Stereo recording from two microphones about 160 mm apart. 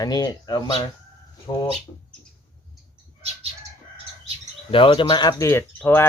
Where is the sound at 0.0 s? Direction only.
25° left (ahead or behind).